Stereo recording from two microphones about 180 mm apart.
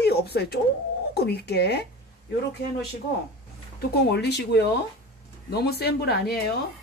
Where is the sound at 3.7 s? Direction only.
70° left (ahead or behind).